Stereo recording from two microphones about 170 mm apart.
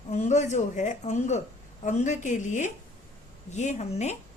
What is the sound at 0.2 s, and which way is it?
A woman's voice, 45° left (ahead or behind).